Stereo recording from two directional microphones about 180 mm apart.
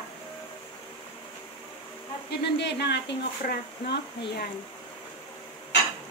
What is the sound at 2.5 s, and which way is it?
Speech, 70° left (ahead or behind).